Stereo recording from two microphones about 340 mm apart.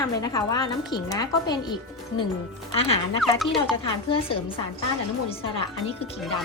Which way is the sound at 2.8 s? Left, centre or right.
Centre.